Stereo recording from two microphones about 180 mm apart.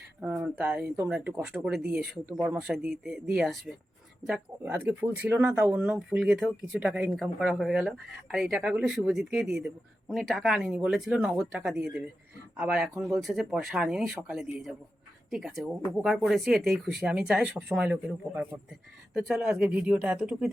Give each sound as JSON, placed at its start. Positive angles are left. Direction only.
{"t": 0.2, "sound": "speech", "side_deg": -10}